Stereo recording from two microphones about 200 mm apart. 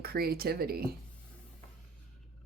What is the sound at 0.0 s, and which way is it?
Speech, 50° right (ahead or behind).